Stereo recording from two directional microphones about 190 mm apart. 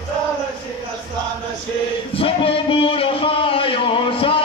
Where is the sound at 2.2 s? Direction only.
30° left (ahead or behind).